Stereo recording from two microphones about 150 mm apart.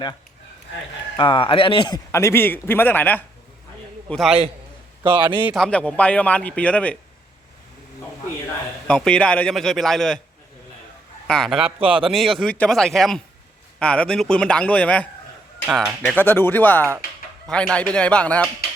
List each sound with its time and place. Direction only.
1.1 s speech: 30° left (ahead or behind)
2.1 s speech: 15° left (ahead or behind)
4.1 s a man's voice: centre (ahead or behind)
5.0 s a man's voice: 10° right (ahead or behind)
5.5 s speech: 5° left (ahead or behind)
8.9 s a man's voice: 5° left (ahead or behind)
11.3 s a man's voice: centre (ahead or behind)
15.7 s a man's voice: centre (ahead or behind)
16.1 s speech: 15° left (ahead or behind)